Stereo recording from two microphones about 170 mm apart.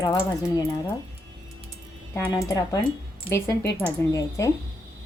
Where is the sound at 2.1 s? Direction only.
20° left (ahead or behind).